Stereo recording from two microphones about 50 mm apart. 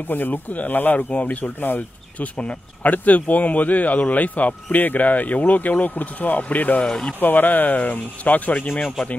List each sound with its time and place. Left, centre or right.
0.1 s speech: left
2.3 s speech: left
6.9 s speech: centre
7.2 s speech: left